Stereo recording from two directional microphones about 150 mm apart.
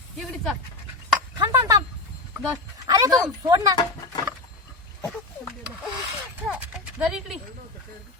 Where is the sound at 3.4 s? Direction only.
25° right (ahead or behind).